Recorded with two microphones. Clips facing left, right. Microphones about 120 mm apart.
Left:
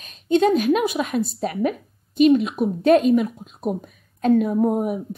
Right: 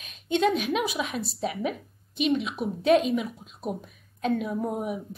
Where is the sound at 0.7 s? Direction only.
45° left (ahead or behind).